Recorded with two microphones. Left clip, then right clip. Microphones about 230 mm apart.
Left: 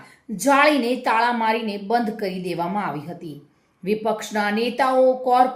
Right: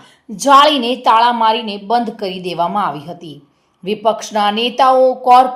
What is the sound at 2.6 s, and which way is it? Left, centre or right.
Speech, right.